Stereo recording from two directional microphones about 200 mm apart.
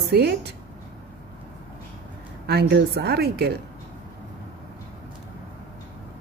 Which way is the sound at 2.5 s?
55° right (ahead or behind).